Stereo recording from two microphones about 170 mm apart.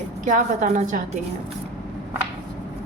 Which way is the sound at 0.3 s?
50° right (ahead or behind).